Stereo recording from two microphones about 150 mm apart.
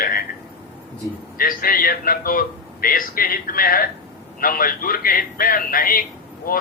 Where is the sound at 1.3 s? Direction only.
75° left (ahead or behind).